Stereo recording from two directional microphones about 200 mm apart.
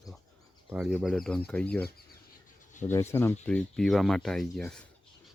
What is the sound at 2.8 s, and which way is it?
Speech, 40° left (ahead or behind).